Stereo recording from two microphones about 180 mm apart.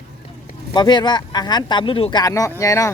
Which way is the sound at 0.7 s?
25° left (ahead or behind).